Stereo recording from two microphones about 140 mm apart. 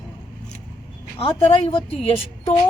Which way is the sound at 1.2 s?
40° left (ahead or behind).